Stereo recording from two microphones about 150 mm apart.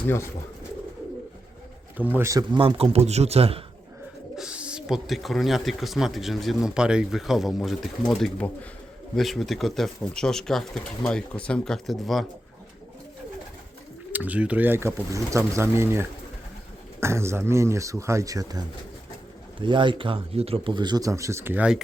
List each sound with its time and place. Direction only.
2.1 s speech: 20° right (ahead or behind)
2.5 s speech: 35° right (ahead or behind)
4.4 s speech: 5° right (ahead or behind)
14.1 s speech: 10° right (ahead or behind)
19.6 s speech: 35° right (ahead or behind); by 21.8 s 10° right (ahead or behind)